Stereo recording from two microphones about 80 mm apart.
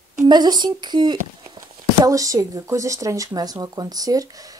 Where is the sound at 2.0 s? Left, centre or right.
Right.